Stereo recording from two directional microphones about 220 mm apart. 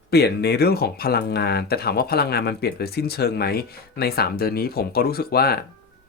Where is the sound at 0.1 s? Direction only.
45° left (ahead or behind).